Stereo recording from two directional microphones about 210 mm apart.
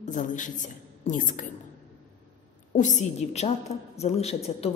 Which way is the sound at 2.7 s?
35° left (ahead or behind).